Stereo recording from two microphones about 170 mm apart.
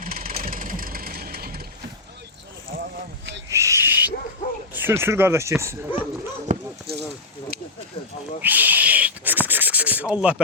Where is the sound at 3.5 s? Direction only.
15° right (ahead or behind).